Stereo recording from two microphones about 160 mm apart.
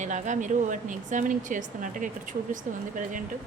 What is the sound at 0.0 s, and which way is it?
Speech, 50° right (ahead or behind).